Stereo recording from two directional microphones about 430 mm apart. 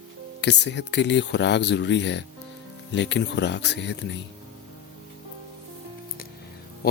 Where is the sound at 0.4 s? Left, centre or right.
Left.